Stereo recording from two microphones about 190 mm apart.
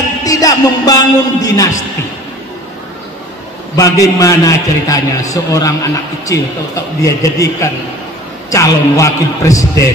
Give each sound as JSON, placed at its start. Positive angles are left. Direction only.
{"t": 0.2, "sound": "a man's voice", "side_deg": 20}
{"t": 3.7, "sound": "a man's voice", "side_deg": 15}